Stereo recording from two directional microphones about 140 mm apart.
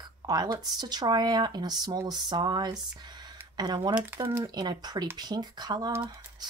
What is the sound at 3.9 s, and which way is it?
Speech, 15° right (ahead or behind).